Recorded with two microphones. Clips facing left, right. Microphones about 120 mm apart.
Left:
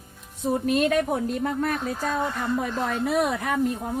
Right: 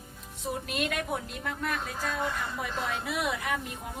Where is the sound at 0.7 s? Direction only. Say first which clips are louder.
Left 10 dB; 40° left (ahead or behind).